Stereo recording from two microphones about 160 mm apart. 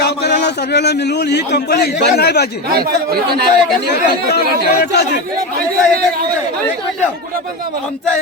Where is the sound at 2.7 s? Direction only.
70° right (ahead or behind).